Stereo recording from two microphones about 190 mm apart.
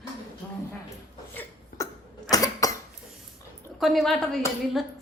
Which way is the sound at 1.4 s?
15° left (ahead or behind).